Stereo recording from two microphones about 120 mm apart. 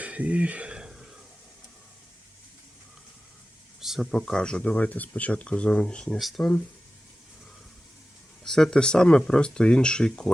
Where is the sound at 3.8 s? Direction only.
Centre (ahead or behind).